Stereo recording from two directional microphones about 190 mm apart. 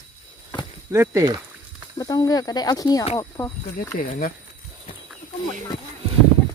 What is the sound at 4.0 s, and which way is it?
Speech, 45° left (ahead or behind).